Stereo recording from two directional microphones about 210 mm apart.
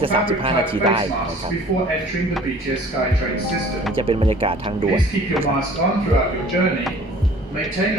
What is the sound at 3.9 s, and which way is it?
Speech, 25° right (ahead or behind).